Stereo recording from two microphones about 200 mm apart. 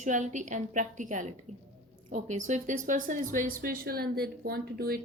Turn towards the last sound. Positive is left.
turn(degrees=-50)  # may be behind; listen again after turning